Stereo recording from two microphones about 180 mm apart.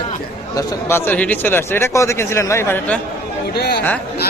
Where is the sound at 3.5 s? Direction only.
65° left (ahead or behind).